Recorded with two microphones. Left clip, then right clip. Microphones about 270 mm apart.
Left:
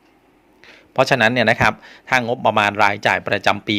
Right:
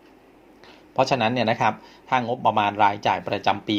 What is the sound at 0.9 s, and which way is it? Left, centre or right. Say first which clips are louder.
A man's voice: left 6 dB; left.